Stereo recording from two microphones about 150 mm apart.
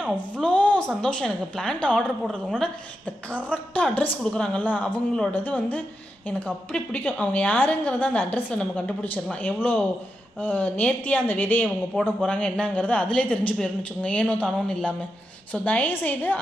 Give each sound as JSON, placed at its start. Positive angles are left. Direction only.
{"t": 0.4, "sound": "a woman's voice", "side_deg": 10}